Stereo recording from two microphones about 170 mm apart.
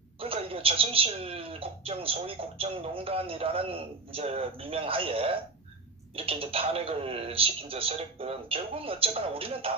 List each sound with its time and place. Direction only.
0.2 s speech: 35° right (ahead or behind)